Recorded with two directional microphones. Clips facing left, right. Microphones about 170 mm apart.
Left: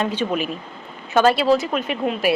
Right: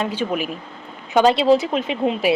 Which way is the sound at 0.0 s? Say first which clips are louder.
Left 1 dB; 10° right (ahead or behind).